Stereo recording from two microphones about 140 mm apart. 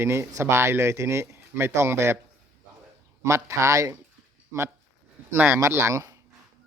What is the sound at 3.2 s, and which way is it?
Speech, 20° right (ahead or behind).